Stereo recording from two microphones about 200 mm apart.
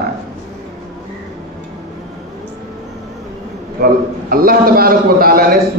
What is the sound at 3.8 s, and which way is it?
A man's voice, 45° right (ahead or behind).